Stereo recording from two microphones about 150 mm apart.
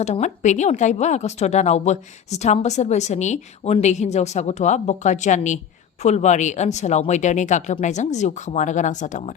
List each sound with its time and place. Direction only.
0.0 s a woman's voice: 50° left (ahead or behind)